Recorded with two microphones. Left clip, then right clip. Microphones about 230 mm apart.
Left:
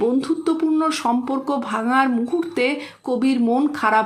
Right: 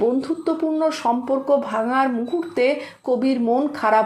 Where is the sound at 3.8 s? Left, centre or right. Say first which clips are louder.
Right 1 dB; centre.